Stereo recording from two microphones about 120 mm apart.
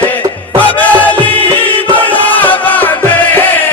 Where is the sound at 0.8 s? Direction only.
15° left (ahead or behind).